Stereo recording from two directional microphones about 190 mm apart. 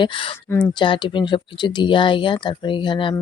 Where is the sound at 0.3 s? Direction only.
10° left (ahead or behind).